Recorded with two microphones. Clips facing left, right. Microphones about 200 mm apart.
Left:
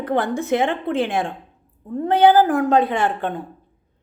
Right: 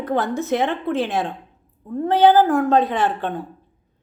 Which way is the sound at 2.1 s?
10° left (ahead or behind).